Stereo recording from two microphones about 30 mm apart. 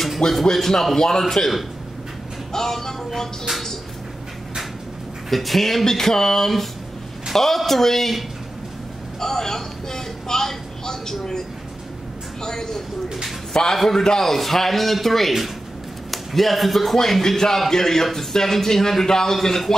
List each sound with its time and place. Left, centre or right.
0.3 s speech: centre
2.5 s speech: centre
5.3 s speech: centre
9.2 s a woman's voice: centre
12.4 s a man's voice: centre